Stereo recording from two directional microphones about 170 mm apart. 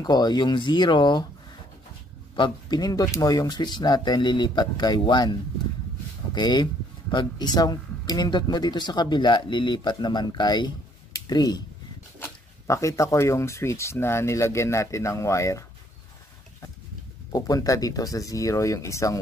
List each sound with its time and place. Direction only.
0.0 s speech: 25° left (ahead or behind)
2.3 s speech: 25° left (ahead or behind)
6.3 s speech: 25° left (ahead or behind)
17.3 s speech: 20° left (ahead or behind)